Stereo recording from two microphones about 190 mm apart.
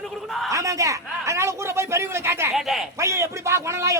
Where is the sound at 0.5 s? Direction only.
15° right (ahead or behind).